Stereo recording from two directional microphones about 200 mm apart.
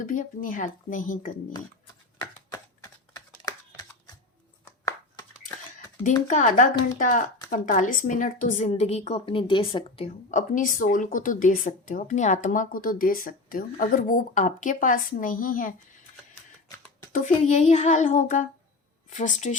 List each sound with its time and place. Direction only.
0.0 s a woman's voice: 40° left (ahead or behind)
2.2 s typing: 15° left (ahead or behind)
4.6 s a sound: 15° left (ahead or behind)
6.2 s a woman's voice: 40° left (ahead or behind)
17.1 s a woman's voice: 40° left (ahead or behind)